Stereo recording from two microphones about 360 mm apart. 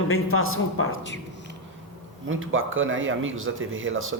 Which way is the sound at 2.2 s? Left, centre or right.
Right.